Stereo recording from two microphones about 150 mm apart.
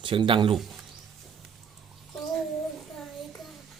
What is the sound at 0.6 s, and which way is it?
Speech, centre (ahead or behind).